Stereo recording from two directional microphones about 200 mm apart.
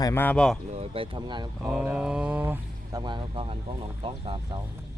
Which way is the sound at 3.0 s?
25° right (ahead or behind).